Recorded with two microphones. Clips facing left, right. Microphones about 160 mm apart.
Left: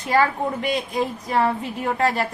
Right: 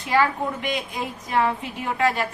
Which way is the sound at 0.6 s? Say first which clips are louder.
Left 4 dB; 35° left (ahead or behind).